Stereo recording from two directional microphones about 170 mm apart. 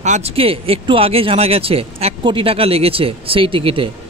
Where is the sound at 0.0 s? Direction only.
40° right (ahead or behind).